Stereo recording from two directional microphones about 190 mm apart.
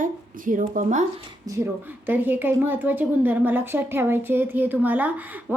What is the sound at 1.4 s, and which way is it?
Speech, 15° right (ahead or behind).